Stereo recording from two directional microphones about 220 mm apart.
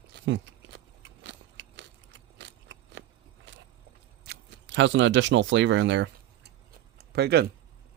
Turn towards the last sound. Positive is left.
turn(degrees=-50)  # may be behind; listen again after turning